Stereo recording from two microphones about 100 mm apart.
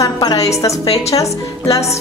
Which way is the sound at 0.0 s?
40° left (ahead or behind).